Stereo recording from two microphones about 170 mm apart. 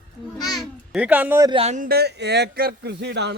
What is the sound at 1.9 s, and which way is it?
Speech, 70° right (ahead or behind).